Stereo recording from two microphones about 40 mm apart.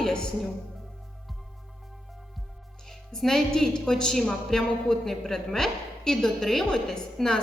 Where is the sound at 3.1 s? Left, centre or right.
Centre.